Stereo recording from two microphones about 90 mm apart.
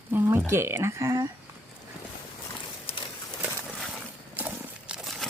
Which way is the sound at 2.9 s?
90° left.